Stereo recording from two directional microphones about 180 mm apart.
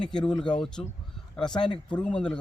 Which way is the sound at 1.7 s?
25° left (ahead or behind).